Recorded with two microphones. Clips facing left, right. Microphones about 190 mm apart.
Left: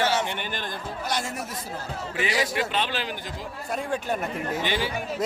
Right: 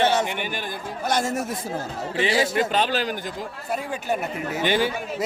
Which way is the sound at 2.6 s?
40° right (ahead or behind).